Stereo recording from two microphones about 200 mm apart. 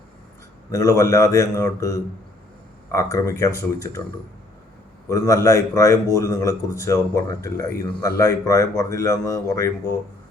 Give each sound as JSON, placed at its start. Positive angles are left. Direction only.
{"t": 0.7, "sound": "speech", "side_deg": 15}
{"t": 5.0, "sound": "speech", "side_deg": 15}